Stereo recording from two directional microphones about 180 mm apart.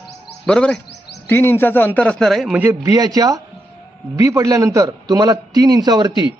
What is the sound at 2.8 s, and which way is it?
A man's voice, 20° right (ahead or behind).